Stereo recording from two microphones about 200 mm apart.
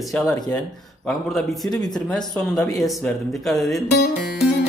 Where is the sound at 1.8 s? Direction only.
5° left (ahead or behind).